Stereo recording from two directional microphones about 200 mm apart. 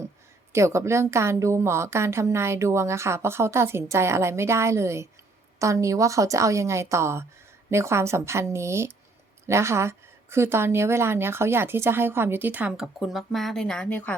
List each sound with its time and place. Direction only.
0.5 s a woman's voice: 15° right (ahead or behind); by 14.2 s 5° left (ahead or behind)